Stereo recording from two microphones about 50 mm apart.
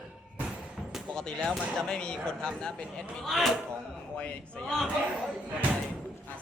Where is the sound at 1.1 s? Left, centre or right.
Centre.